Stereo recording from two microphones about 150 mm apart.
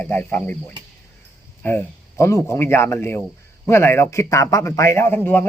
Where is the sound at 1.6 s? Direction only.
15° left (ahead or behind).